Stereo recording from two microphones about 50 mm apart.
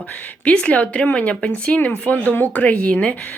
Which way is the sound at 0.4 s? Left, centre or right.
Left.